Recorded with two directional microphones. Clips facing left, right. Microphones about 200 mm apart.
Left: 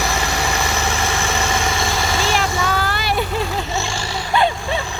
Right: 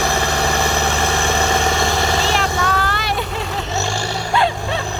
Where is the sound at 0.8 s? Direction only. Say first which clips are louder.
Right 3 dB; 60° right (ahead or behind).